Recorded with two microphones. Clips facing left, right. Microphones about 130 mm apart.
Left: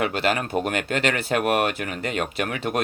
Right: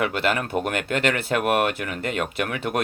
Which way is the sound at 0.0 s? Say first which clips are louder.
Even; 55° right (ahead or behind).